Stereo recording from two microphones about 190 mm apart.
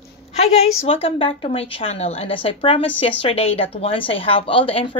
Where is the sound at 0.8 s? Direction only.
30° left (ahead or behind).